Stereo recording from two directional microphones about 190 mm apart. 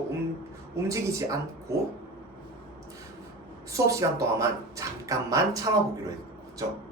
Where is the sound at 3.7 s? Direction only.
15° right (ahead or behind).